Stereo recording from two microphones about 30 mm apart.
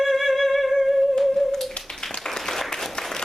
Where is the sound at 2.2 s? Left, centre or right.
Centre.